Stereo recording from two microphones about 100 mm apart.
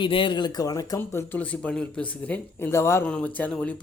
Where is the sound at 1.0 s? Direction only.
25° left (ahead or behind).